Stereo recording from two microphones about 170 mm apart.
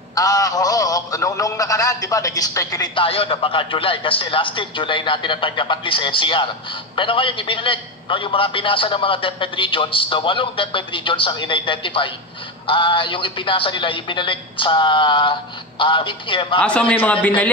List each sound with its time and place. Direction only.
0.1 s a man's voice: 20° left (ahead or behind)
16.5 s a man's voice: 5° left (ahead or behind)